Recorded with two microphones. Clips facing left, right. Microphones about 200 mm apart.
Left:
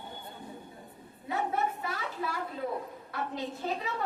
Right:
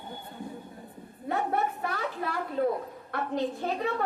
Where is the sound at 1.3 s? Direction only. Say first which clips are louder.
Right 3 dB; 60° right (ahead or behind).